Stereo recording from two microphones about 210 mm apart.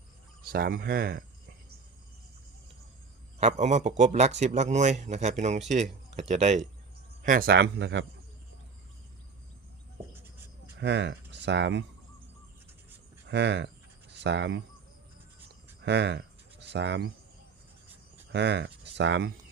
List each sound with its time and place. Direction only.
0.5 s speech: 45° right (ahead or behind)
3.3 s a man's voice: 35° right (ahead or behind)
7.2 s speech: 40° right (ahead or behind)
10.8 s speech: 55° right (ahead or behind)
13.2 s speech: 55° right (ahead or behind)
15.8 s cricket: 55° right (ahead or behind)
18.3 s speech: 55° right (ahead or behind)